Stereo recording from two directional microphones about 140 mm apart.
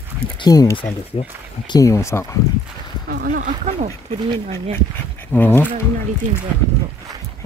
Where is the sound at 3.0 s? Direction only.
90° right.